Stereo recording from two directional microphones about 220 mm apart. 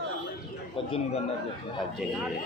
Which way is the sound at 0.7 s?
25° left (ahead or behind).